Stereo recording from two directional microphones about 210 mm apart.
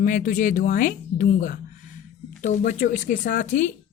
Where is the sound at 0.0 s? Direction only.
40° left (ahead or behind).